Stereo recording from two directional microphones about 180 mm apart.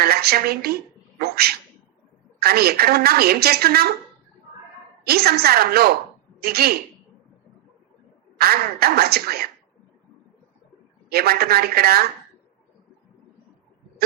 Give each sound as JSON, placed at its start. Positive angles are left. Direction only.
{"t": 0.0, "sound": "a woman's voice", "side_deg": -60}
{"t": 1.2, "sound": "dog", "side_deg": -60}
{"t": 2.4, "sound": "a woman's voice", "side_deg": -60}
{"t": 5.0, "sound": "a woman's voice", "side_deg": -60}
{"t": 8.4, "sound": "a woman's voice", "side_deg": -60}
{"t": 11.1, "sound": "a woman's voice", "side_deg": -60}